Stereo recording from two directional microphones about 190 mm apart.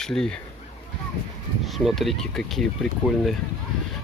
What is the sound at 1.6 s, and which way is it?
Speech, centre (ahead or behind).